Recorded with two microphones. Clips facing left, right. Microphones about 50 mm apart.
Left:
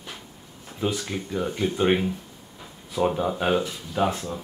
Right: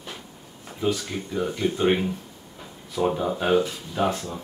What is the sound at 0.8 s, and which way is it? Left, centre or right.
Speech, centre.